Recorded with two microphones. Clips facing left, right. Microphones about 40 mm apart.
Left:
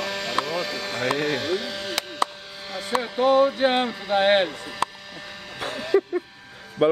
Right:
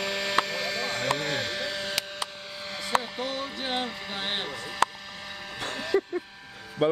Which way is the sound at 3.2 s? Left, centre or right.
Left.